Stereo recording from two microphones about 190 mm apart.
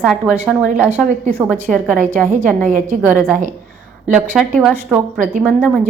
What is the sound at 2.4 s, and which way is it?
Speech, 40° right (ahead or behind).